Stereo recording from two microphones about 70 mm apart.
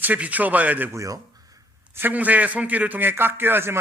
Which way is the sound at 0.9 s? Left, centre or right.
Right.